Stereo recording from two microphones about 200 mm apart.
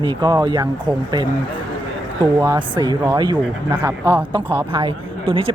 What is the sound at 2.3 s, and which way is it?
A woman's voice, 20° right (ahead or behind).